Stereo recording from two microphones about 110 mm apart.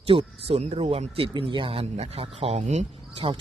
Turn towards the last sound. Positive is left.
turn(degrees=-90)